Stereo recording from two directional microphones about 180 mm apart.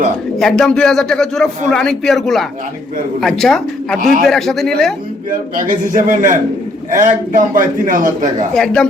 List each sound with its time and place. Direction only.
0.3 s speech: centre (ahead or behind)
4.0 s a man's voice: 50° right (ahead or behind)
4.3 s speech: centre (ahead or behind)
5.3 s a man's voice: 50° right (ahead or behind)
8.5 s speech: 5° left (ahead or behind)